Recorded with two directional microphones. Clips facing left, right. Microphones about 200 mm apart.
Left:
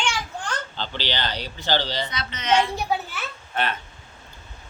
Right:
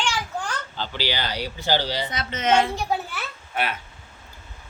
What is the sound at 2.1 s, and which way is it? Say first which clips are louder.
Speech: right 3 dB; 50° right (ahead or behind).